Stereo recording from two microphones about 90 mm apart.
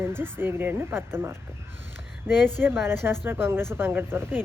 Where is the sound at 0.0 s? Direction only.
25° right (ahead or behind).